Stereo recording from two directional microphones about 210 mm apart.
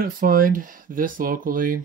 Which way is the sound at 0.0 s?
40° right (ahead or behind).